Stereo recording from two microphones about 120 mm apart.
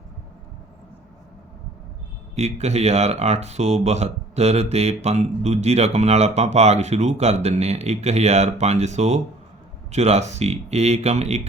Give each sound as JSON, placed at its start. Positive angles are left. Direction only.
{"t": 2.3, "sound": "speech", "side_deg": -65}